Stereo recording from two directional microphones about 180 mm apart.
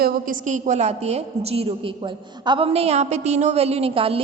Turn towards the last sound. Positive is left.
turn(degrees=-30)  # may be behind; listen again after turning